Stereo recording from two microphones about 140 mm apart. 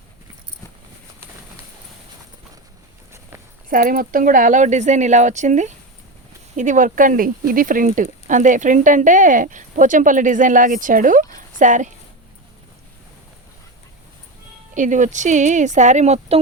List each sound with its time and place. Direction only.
3.1 s walk: 20° right (ahead or behind)
3.7 s speech: 85° right; by 11.3 s 70° right (ahead or behind)
11.3 s a sound: 65° right (ahead or behind)
14.8 s speech: 65° right (ahead or behind)